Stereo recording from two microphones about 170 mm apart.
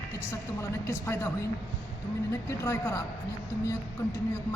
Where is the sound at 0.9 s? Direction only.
15° left (ahead or behind).